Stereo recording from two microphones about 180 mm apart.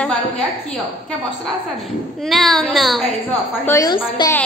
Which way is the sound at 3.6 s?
20° left (ahead or behind).